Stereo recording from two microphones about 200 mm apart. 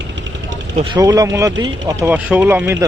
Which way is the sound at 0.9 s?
15° right (ahead or behind).